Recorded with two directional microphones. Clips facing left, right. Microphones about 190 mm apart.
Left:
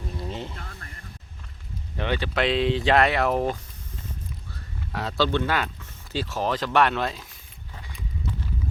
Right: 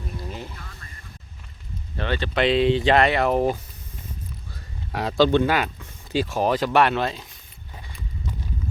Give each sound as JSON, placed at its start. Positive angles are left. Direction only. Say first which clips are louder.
{"t": 0.2, "sound": "a sound", "louder": "left 4 dB", "side_deg": 25}
{"t": 0.8, "sound": "music", "louder": "left 2 dB", "side_deg": 60}
{"t": 2.0, "sound": "speech", "louder": "right 1 dB", "side_deg": 15}
{"t": 2.3, "sound": "speech", "louder": "right 5 dB", "side_deg": 0}
{"t": 4.9, "sound": "speech", "louder": "right 6 dB", "side_deg": -15}